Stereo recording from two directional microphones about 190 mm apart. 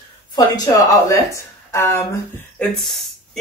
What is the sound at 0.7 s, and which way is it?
Speech, 15° left (ahead or behind).